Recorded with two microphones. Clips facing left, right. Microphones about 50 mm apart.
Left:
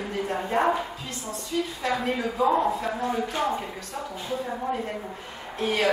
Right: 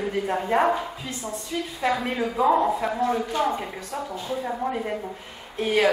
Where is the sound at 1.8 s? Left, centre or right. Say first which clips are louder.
Right 5 dB; centre.